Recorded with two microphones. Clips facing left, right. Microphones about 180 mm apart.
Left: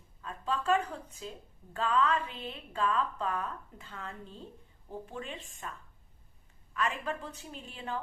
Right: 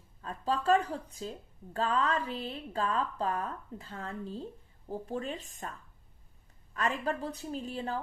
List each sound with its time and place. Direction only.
0.2 s a sound: 35° right (ahead or behind)
1.7 s speech: 40° right (ahead or behind)
6.7 s speech: 35° right (ahead or behind)